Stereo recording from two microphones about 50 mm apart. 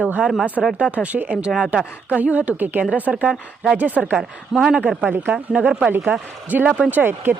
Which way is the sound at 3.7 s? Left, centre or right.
Right.